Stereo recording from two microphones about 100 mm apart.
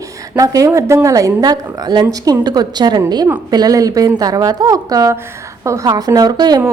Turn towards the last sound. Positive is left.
turn(degrees=-45)  # may be behind; listen again after turning